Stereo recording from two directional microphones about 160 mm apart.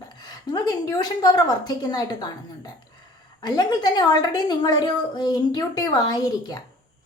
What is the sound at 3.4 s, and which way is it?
A woman's voice, 25° left (ahead or behind).